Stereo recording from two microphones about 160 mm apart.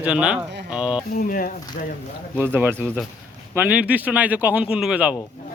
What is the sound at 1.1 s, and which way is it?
Speech, 60° left (ahead or behind).